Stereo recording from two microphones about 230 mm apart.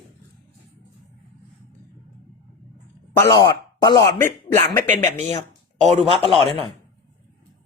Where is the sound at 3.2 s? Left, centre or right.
Centre.